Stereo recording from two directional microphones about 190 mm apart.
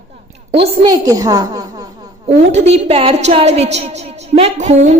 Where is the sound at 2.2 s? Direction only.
35° right (ahead or behind).